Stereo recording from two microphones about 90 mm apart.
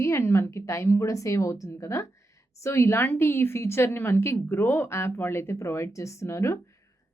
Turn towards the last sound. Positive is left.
turn(degrees=30)  # may be behind; listen again after turning